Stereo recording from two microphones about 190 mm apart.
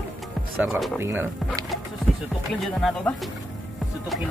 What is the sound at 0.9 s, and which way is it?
Speech, 10° right (ahead or behind).